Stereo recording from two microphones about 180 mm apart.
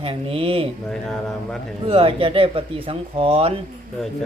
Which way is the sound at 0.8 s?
5° left (ahead or behind).